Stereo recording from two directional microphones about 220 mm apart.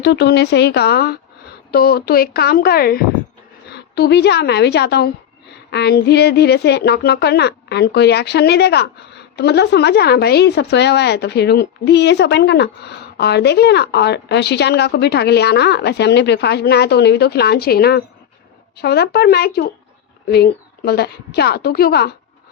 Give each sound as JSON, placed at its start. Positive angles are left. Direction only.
{"t": 0.0, "sound": "a woman's voice", "side_deg": 50}